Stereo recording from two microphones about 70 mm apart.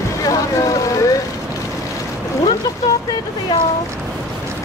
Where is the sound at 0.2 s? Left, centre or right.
Left.